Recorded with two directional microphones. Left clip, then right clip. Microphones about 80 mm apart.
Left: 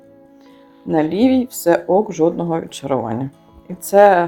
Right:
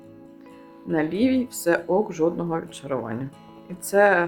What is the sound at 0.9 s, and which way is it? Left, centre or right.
Speech, left.